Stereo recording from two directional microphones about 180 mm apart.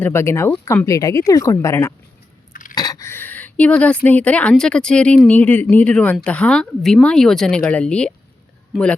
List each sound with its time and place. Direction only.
0.0 s speech: 15° left (ahead or behind)
2.5 s a sound: 50° left (ahead or behind)
2.7 s speech: 20° left (ahead or behind); by 9.0 s 5° left (ahead or behind)